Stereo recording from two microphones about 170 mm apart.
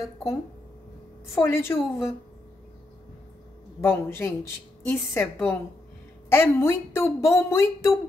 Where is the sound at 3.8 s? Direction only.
15° left (ahead or behind).